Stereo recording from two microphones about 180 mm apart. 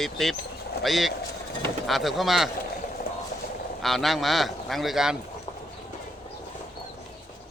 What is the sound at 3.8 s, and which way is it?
Speech, centre (ahead or behind).